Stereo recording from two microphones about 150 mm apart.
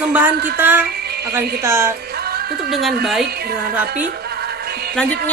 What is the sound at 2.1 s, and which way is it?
Music, 90° right.